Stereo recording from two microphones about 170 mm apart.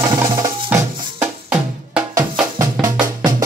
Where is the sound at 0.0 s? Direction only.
20° right (ahead or behind).